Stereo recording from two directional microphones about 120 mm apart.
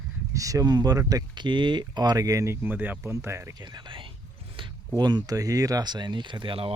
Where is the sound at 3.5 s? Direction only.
40° right (ahead or behind).